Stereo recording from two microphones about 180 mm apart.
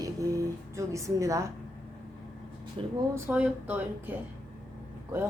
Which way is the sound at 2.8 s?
30° right (ahead or behind).